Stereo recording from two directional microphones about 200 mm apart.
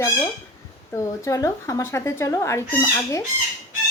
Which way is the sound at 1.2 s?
15° left (ahead or behind).